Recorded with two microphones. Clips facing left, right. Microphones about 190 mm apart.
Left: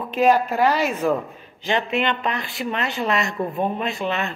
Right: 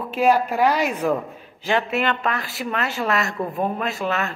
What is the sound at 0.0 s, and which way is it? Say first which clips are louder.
A woman's voice: left 1 dB; 10° right (ahead or behind).